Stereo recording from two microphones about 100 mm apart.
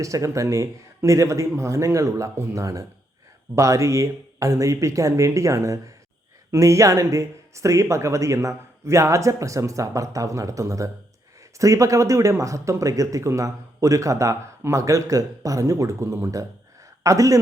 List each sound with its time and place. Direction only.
0.0 s speech: 35° right (ahead or behind)